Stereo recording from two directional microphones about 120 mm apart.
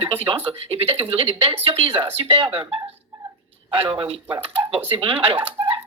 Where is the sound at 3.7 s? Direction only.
45° right (ahead or behind).